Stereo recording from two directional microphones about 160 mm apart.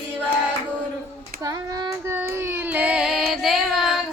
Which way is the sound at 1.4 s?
15° right (ahead or behind).